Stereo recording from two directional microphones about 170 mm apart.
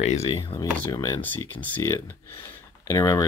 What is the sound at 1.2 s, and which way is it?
Speech, 10° left (ahead or behind).